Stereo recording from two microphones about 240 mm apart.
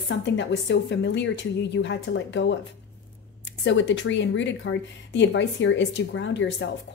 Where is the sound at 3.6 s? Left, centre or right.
Left.